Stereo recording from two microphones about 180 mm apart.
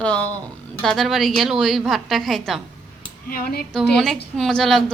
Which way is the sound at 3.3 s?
55° left (ahead or behind).